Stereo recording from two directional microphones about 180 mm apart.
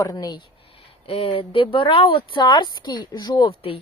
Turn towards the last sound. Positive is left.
turn(degrees=30)  # may be behind; listen again after turning